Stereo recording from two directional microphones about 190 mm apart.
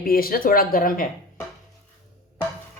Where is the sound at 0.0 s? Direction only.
50° left (ahead or behind).